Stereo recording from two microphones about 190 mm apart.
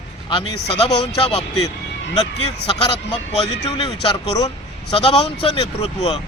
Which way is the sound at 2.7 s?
25° left (ahead or behind).